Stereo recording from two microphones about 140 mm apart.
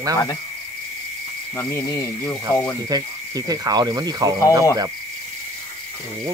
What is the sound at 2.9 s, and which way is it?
Cricket, 25° right (ahead or behind).